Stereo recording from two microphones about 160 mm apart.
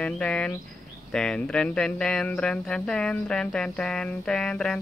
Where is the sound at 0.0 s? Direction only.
5° left (ahead or behind).